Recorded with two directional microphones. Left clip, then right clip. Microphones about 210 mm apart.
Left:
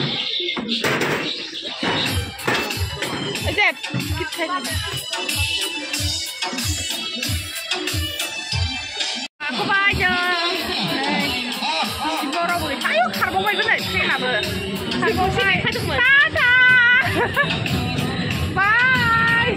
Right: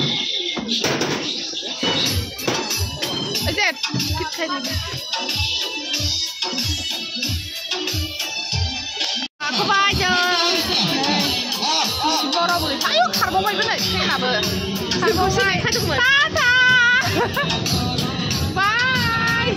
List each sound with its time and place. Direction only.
9.7 s speech: 20° right (ahead or behind)
10.4 s music: 50° right (ahead or behind)
12.4 s a child's voice: 5° left (ahead or behind)
13.7 s speech: 10° right (ahead or behind)
16.0 s music: 10° right (ahead or behind)
18.6 s child singing: 15° left (ahead or behind)